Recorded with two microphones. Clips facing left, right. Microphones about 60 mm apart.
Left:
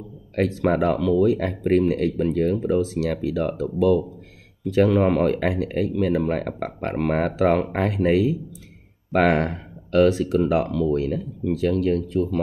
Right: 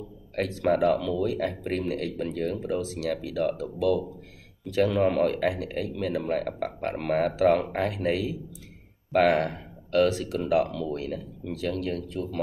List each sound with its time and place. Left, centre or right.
0.4 s speech: left